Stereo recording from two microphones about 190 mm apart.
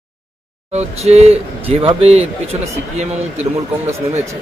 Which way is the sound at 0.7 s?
35° right (ahead or behind).